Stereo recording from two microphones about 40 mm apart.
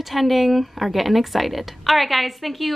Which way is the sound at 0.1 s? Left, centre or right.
Centre.